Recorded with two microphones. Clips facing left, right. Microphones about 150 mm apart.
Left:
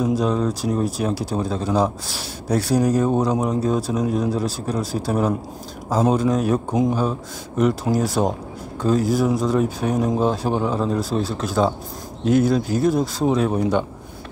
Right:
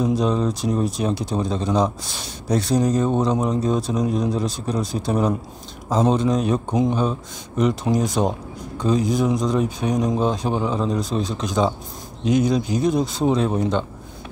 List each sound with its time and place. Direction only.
0.0 s speech: 5° left (ahead or behind)
12.3 s speech: 15° right (ahead or behind)
13.2 s speech: 5° left (ahead or behind)